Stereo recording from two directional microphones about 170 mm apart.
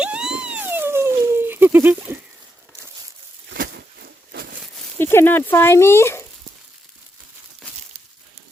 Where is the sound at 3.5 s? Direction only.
65° right (ahead or behind).